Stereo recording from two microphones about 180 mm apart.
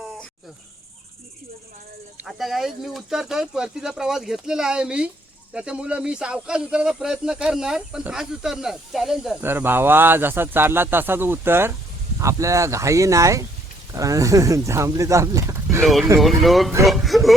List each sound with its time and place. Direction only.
2.1 s speech: centre (ahead or behind); by 15.8 s 20° right (ahead or behind)
16.2 s speech: centre (ahead or behind)